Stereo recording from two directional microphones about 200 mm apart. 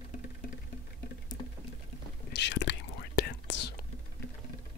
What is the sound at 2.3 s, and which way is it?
Whispering, 60° left (ahead or behind).